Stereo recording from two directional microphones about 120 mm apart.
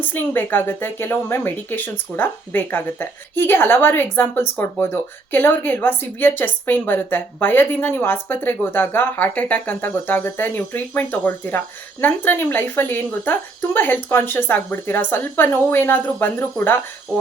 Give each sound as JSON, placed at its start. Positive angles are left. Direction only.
{"t": 0.0, "sound": "speech", "side_deg": 15}